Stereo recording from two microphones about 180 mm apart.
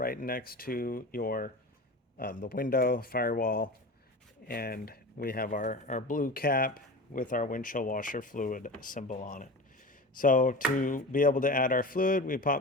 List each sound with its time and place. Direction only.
0.0 s speech: 55° left (ahead or behind)